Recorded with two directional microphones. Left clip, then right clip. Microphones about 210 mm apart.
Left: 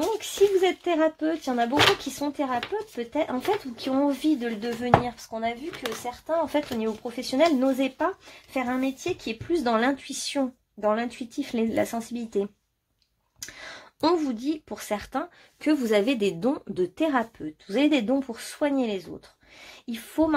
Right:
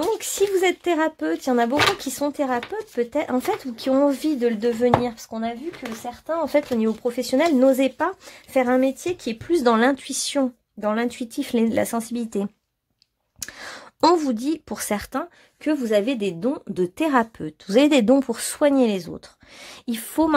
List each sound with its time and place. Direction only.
0.2 s speech: 45° right (ahead or behind)
15.6 s speech: 10° right (ahead or behind)
16.7 s speech: 35° right (ahead or behind)